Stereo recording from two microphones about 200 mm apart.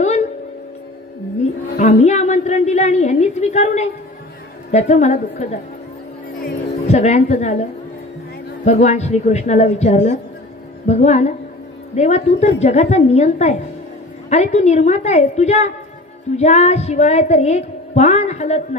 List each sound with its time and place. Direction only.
0.0 s music: 35° left (ahead or behind)
1.7 s a woman's voice: 40° left (ahead or behind)
6.4 s music: 35° left (ahead or behind)
8.6 s a woman's voice: 35° left (ahead or behind)